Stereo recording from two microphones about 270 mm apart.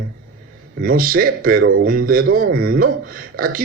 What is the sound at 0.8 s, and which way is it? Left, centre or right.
A man's voice, right.